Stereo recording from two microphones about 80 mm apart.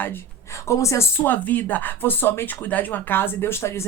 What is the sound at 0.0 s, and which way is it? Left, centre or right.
A woman's voice, left.